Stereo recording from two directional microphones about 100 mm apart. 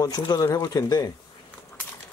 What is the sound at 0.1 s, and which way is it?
Speech, 45° left (ahead or behind).